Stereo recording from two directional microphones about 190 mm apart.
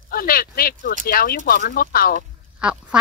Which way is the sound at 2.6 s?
5° right (ahead or behind).